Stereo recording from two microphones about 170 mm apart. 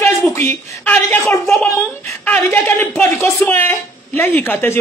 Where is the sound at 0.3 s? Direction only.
15° left (ahead or behind).